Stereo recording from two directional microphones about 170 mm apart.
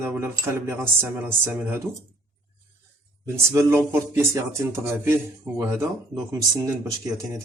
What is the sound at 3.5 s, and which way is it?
Speech, 15° right (ahead or behind).